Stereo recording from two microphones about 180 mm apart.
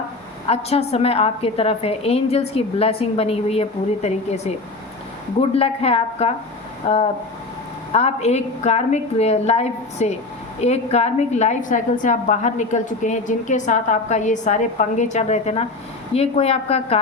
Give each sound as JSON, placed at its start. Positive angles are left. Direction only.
{"t": 0.4, "sound": "a woman's voice", "side_deg": 35}